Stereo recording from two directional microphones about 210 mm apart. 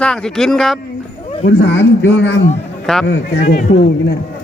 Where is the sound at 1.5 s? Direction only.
55° left (ahead or behind).